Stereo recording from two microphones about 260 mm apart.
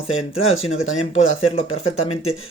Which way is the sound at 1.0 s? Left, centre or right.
Left.